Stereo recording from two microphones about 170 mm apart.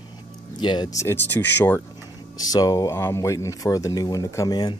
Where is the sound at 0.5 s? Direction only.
25° left (ahead or behind).